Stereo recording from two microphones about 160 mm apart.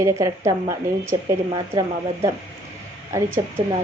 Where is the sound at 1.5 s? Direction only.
30° right (ahead or behind).